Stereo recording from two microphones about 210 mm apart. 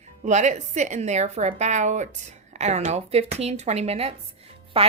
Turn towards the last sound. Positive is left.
turn(degrees=-25)  # may be behind; listen again after turning